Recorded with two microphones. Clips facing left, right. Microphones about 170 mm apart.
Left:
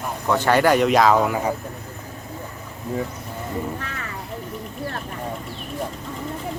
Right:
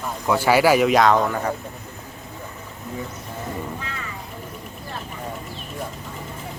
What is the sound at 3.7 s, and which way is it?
Music, 70° left (ahead or behind).